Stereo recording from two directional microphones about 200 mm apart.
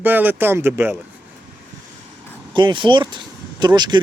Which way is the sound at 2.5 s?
25° right (ahead or behind).